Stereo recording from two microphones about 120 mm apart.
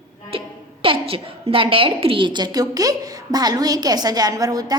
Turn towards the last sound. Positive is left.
turn(degrees=-30)  # may be behind; listen again after turning